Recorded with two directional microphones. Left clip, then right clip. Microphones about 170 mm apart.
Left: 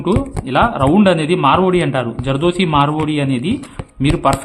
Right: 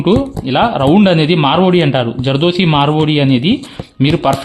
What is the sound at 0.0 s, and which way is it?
Speech, 30° right (ahead or behind).